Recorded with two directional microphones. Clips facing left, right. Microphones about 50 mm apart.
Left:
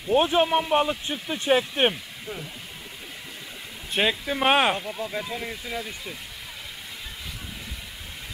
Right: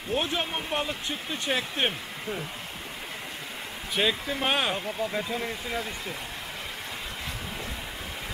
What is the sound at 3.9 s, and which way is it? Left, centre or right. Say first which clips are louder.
Speech: left 3 dB; left.